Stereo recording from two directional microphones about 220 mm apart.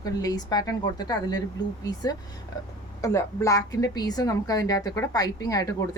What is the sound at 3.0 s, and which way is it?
A woman's voice, 15° left (ahead or behind).